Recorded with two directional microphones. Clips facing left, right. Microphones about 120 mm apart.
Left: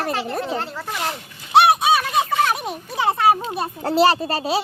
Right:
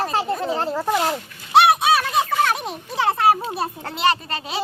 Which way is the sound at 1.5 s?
Centre (ahead or behind).